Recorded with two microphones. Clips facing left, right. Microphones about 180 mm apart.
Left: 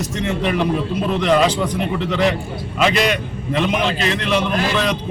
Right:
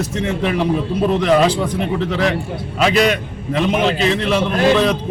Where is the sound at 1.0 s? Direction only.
35° right (ahead or behind).